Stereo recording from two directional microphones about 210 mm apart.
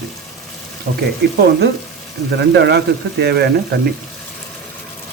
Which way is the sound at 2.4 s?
55° right (ahead or behind).